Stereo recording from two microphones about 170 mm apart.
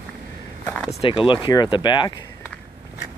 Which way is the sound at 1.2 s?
30° left (ahead or behind).